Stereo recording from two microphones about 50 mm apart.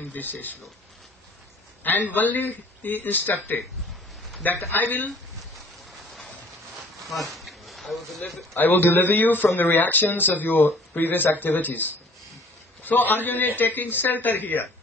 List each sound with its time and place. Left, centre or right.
0.1 s speech: left
1.8 s a man's voice: left
4.7 s speech: left
7.0 s a sound: centre
8.5 s speech: left